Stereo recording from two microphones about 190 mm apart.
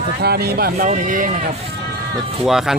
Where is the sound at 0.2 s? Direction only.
55° right (ahead or behind).